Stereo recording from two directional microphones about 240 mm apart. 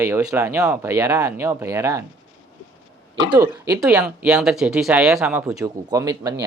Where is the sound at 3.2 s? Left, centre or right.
Centre.